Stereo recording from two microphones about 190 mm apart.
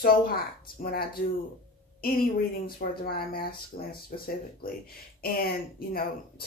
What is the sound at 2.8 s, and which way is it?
Speech, 50° left (ahead or behind).